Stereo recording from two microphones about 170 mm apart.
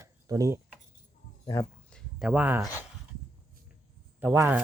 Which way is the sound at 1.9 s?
5° right (ahead or behind).